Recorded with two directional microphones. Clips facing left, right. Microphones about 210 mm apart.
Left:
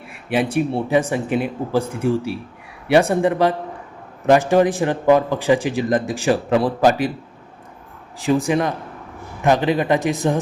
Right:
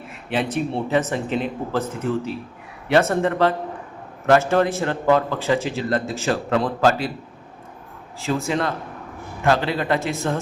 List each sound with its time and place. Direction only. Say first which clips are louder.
0.1 s a man's voice: left 4 dB; 10° left (ahead or behind)
8.2 s a man's voice: left 5 dB; 15° left (ahead or behind)